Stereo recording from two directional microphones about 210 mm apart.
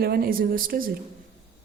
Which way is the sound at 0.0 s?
45° right (ahead or behind).